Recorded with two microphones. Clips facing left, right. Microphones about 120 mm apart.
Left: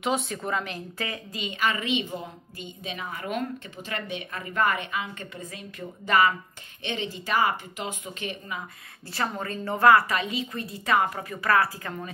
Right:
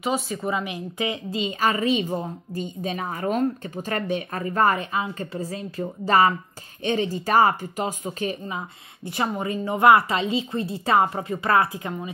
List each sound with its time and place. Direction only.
0.0 s speech: 5° right (ahead or behind); by 12.1 s 20° right (ahead or behind)